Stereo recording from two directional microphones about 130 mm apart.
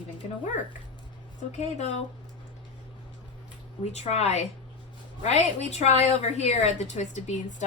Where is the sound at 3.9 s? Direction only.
55° left (ahead or behind).